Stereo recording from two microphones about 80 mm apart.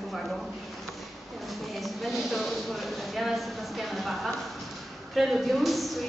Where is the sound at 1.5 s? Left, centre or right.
Centre.